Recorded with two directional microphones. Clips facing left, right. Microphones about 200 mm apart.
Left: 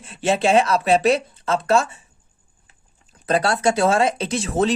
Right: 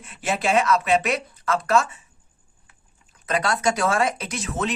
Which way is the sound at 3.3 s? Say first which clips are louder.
Left 4 dB; 30° left (ahead or behind).